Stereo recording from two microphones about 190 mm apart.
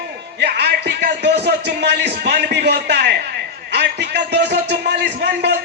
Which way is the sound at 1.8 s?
60° right (ahead or behind).